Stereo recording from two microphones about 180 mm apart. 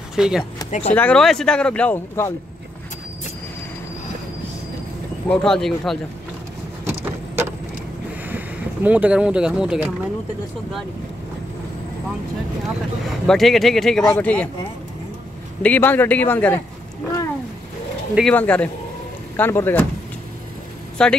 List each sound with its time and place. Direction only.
0.1 s speech: 5° right (ahead or behind)
0.7 s speech: 40° left (ahead or behind)
0.9 s speech: 5° left (ahead or behind)
5.3 s speech: 5° left (ahead or behind)
6.8 s vehicle: 15° right (ahead or behind)
8.3 s speech: 10° right (ahead or behind)
13.3 s speech: centre (ahead or behind)
15.6 s speech: 10° left (ahead or behind)
18.1 s speech: 5° left (ahead or behind)
21.0 s speech: 5° left (ahead or behind)